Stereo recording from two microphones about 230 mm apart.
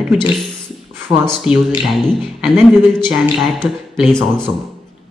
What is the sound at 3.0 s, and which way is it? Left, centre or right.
Speech, centre.